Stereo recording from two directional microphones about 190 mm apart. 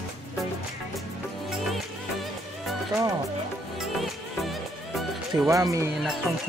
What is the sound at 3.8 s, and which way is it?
Music, centre (ahead or behind).